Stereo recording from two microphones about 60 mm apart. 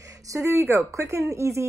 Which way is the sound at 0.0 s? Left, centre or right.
Right.